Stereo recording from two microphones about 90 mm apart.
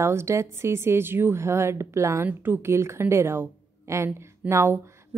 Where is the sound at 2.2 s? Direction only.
20° right (ahead or behind).